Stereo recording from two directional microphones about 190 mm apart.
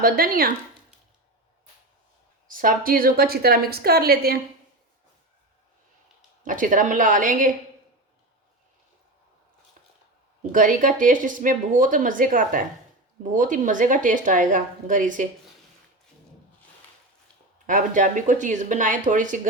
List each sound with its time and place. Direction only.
0.0 s speech: 50° right (ahead or behind)
2.5 s speech: 45° right (ahead or behind)
6.4 s speech: 45° right (ahead or behind)
10.5 s speech: 45° right (ahead or behind)
17.7 s speech: 45° right (ahead or behind)